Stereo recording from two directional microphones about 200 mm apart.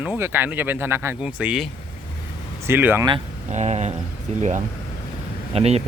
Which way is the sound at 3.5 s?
35° right (ahead or behind).